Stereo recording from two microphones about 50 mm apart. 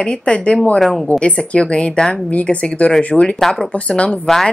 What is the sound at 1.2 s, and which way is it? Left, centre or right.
Speech, left.